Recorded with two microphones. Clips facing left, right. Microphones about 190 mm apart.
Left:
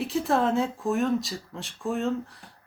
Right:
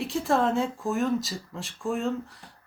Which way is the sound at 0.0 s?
Centre (ahead or behind).